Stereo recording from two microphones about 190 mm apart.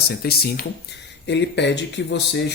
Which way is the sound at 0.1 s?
55° left (ahead or behind).